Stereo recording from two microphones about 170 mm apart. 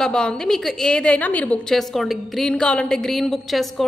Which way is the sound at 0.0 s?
5° left (ahead or behind).